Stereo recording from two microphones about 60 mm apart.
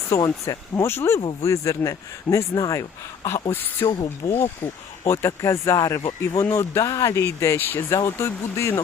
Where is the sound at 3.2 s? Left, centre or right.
Left.